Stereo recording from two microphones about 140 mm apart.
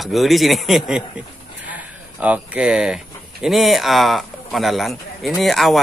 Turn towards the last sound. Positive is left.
turn(degrees=0)  # may be behind; listen again after turning